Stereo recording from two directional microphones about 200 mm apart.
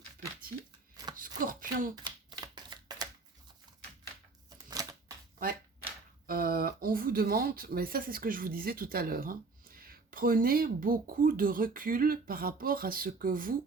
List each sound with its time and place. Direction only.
1.5 s a sound: 45° right (ahead or behind)
2.0 s shuffling cards: 20° right (ahead or behind)
4.5 s shuffling cards: 20° right (ahead or behind)
6.2 s speech: 45° right (ahead or behind)